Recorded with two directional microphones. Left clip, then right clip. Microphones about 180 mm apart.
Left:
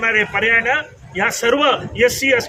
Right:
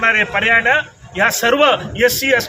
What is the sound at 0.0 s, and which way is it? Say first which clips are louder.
A man's voice: right 2 dB; centre (ahead or behind).